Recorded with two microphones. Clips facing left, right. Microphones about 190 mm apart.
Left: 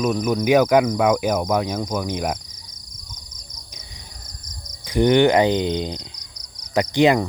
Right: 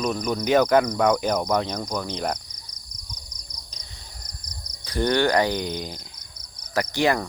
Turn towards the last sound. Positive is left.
turn(degrees=20)  # may be behind; listen again after turning